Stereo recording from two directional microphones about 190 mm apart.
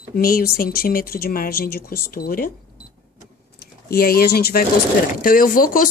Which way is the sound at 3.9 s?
50° left (ahead or behind).